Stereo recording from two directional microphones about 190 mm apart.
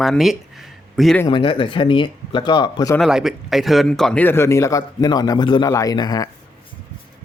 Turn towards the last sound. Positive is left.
turn(degrees=20)  # may be behind; listen again after turning